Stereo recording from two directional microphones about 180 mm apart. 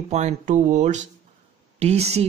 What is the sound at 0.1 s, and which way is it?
Speech, 40° right (ahead or behind).